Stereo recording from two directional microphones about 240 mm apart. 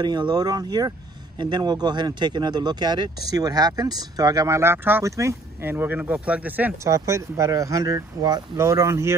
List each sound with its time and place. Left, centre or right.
0.0 s speech: centre